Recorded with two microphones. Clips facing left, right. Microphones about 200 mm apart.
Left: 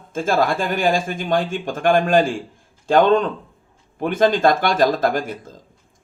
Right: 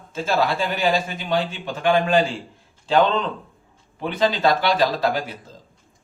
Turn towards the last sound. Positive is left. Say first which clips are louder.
# left 2 dB
turn(degrees=50)  # may be behind; listen again after turning